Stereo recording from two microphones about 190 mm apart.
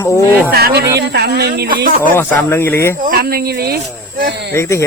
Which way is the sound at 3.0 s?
50° right (ahead or behind).